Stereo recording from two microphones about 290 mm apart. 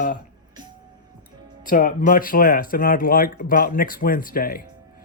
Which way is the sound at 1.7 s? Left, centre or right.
Left.